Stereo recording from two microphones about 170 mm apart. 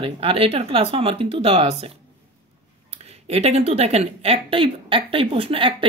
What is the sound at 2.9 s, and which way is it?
A woman's voice, 35° right (ahead or behind).